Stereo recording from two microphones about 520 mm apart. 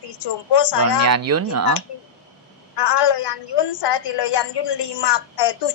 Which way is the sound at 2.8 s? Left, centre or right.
Left.